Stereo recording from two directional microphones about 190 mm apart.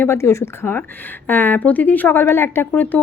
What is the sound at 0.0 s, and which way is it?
Speech, 15° left (ahead or behind).